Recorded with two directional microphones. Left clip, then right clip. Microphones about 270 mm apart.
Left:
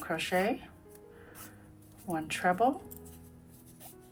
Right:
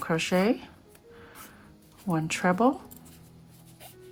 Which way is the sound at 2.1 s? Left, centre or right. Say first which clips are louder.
Right 3 dB; centre.